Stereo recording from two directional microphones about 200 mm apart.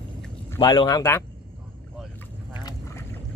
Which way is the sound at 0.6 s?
20° left (ahead or behind).